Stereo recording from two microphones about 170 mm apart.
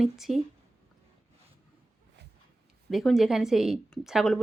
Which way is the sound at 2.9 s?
Centre (ahead or behind).